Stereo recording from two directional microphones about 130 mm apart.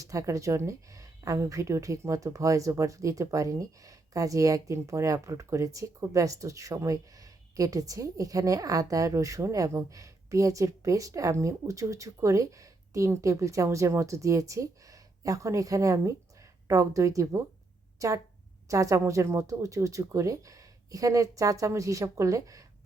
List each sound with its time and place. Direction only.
0.0 s speech: 25° right (ahead or behind)